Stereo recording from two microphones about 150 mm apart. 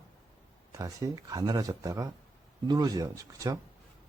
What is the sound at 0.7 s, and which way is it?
Speech, 20° right (ahead or behind).